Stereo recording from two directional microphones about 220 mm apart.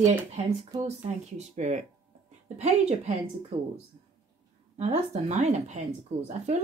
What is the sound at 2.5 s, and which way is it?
Speech, 30° right (ahead or behind).